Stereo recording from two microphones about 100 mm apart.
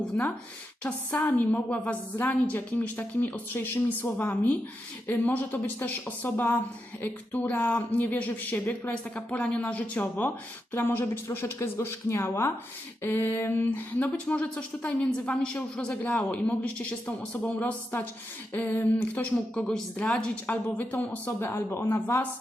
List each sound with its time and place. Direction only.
0.8 s speech: 15° left (ahead or behind)